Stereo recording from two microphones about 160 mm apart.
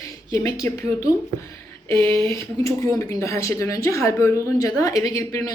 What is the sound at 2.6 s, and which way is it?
A woman's voice, 20° left (ahead or behind).